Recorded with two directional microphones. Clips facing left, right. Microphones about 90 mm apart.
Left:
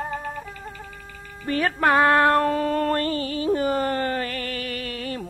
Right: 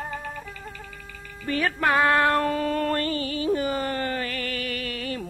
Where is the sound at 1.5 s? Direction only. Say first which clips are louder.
Left 3 dB; 40° left (ahead or behind).